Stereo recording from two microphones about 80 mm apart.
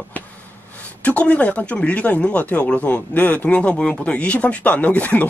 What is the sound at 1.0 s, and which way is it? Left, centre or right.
Speech, centre.